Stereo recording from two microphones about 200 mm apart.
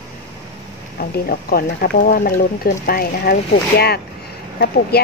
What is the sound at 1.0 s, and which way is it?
Speech, 50° left (ahead or behind).